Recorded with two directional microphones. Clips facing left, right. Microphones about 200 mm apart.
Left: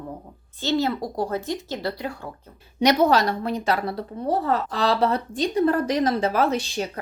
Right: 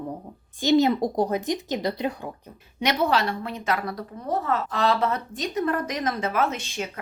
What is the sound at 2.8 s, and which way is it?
A woman's voice, 40° left (ahead or behind).